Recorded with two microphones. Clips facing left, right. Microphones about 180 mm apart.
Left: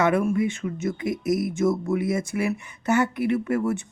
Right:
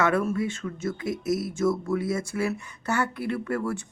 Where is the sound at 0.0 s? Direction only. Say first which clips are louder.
Left 3 dB; 15° left (ahead or behind).